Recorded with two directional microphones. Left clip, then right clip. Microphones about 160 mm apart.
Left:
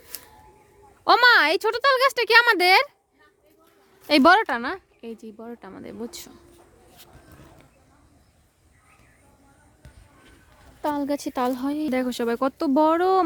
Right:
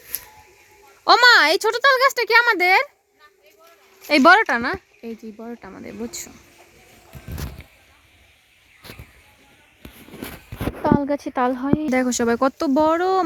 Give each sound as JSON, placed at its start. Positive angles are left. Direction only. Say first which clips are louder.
{"t": 1.0, "sound": "speech", "louder": "right 3 dB", "side_deg": 0}
{"t": 4.0, "sound": "a woman's voice", "louder": "right 3 dB", "side_deg": 15}
{"t": 4.4, "sound": "speech", "louder": "right 5 dB", "side_deg": 0}
{"t": 10.8, "sound": "speech", "louder": "right 5 dB", "side_deg": 20}
{"t": 11.9, "sound": "speech", "louder": "right 5 dB", "side_deg": 0}
{"t": 12.7, "sound": "speech", "louder": "left 1 dB", "side_deg": 20}